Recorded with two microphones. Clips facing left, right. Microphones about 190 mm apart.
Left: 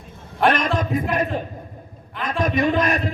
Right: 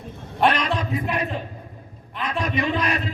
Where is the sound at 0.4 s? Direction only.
45° left (ahead or behind).